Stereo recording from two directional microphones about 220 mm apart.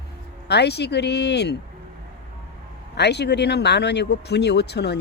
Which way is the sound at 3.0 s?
50° left (ahead or behind).